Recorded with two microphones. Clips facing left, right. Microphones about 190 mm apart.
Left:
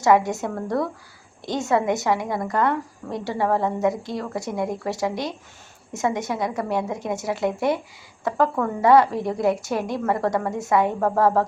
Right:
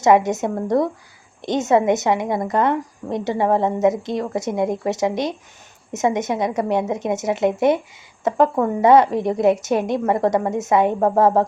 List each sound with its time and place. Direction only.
0.0 s a woman's voice: 20° right (ahead or behind)